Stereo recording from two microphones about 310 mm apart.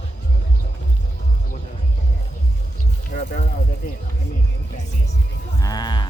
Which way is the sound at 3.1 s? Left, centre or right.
Left.